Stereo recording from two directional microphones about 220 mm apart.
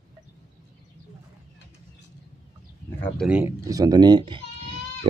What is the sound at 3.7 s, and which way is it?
Goat, 15° right (ahead or behind).